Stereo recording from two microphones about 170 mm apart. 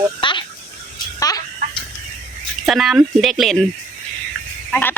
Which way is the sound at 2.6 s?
Centre (ahead or behind).